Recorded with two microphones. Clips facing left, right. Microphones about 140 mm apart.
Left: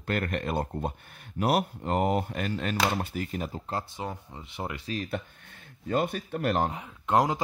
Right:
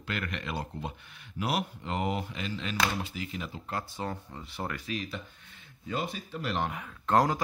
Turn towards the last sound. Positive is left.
turn(degrees=20)  # may be behind; listen again after turning